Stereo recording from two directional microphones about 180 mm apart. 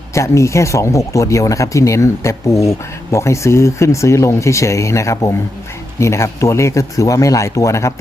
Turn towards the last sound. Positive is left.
turn(degrees=15)  # may be behind; listen again after turning